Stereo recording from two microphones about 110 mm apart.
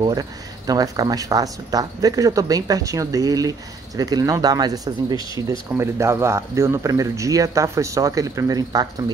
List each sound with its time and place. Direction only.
0.0 s speech: 35° right (ahead or behind)
5.7 s speech: 25° right (ahead or behind)